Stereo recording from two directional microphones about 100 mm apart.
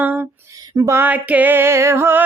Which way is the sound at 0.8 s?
30° right (ahead or behind).